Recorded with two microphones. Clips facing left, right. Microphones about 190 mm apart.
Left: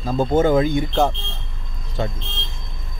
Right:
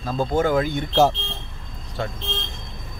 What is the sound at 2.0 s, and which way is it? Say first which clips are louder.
Speech: left 3 dB; 20° left (ahead or behind).